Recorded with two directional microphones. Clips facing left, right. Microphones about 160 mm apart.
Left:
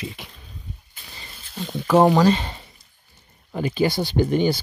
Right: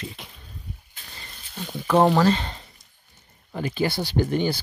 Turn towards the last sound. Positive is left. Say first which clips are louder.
# left 3 dB
turn(degrees=15)  # may be behind; listen again after turning